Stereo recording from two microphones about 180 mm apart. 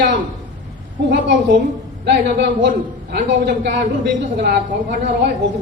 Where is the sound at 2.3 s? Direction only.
85° right.